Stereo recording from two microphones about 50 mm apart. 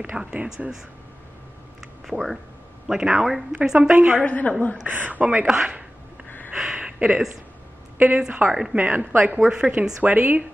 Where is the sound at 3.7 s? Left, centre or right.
Right.